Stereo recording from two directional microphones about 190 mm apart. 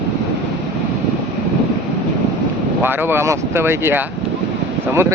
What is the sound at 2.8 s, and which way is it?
Speech, 10° right (ahead or behind).